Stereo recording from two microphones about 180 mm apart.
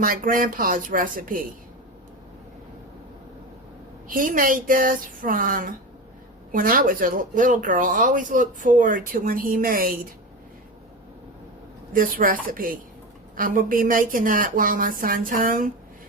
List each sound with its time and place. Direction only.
0.0 s speech: 50° right (ahead or behind)
4.1 s speech: 50° right (ahead or behind)
11.9 s speech: 50° right (ahead or behind)